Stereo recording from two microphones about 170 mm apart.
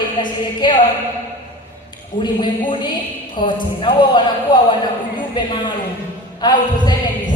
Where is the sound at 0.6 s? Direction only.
25° left (ahead or behind).